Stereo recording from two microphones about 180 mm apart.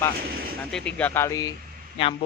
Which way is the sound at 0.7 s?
5° left (ahead or behind).